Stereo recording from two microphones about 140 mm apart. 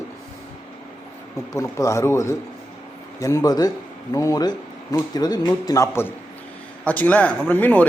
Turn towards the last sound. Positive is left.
turn(degrees=10)  # may be behind; listen again after turning